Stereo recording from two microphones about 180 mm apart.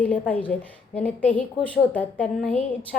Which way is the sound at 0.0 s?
10° left (ahead or behind).